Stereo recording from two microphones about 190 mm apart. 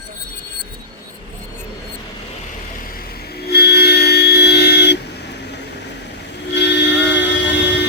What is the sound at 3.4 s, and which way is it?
Train, 60° left (ahead or behind).